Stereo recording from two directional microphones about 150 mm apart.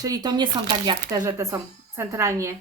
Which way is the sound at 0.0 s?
25° right (ahead or behind).